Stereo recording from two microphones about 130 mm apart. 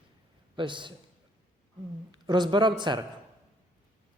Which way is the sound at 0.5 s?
40° right (ahead or behind).